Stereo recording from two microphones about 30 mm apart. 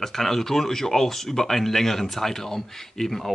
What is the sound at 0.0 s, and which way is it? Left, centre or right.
Speech, centre.